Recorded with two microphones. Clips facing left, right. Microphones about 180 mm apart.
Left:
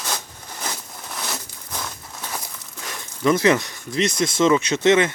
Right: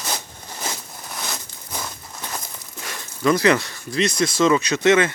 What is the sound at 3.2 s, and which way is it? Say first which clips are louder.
Speech: even; 20° left (ahead or behind).